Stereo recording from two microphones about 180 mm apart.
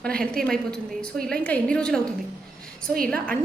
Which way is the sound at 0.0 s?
5° left (ahead or behind).